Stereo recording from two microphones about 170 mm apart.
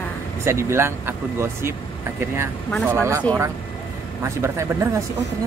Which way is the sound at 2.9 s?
15° right (ahead or behind).